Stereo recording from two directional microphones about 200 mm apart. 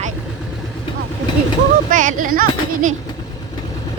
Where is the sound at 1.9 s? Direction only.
40° right (ahead or behind).